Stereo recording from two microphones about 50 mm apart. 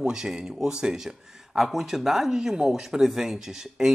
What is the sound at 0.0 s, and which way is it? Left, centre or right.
Speech, centre.